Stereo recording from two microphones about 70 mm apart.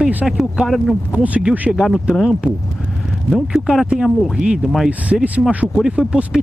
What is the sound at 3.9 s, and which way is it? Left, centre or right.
Speech, centre.